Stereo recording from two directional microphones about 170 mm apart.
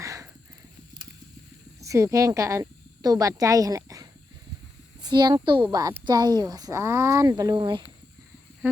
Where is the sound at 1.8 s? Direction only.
20° right (ahead or behind).